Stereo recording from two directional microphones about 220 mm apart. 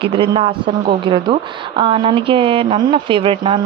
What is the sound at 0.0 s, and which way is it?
A woman's voice, 25° right (ahead or behind).